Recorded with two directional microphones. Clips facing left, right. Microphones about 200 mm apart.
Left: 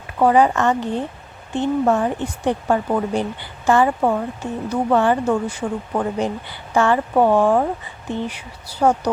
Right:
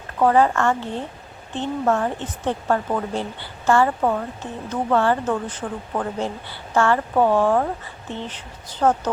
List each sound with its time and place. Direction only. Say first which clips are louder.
0.2 s speech: left 2 dB; 15° left (ahead or behind)